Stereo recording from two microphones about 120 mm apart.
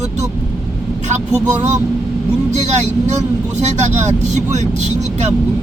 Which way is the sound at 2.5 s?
75° right (ahead or behind).